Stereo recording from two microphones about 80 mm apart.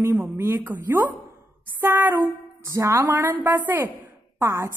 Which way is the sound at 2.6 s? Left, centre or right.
Right.